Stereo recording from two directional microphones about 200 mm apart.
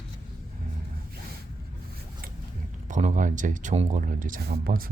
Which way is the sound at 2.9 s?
40° right (ahead or behind).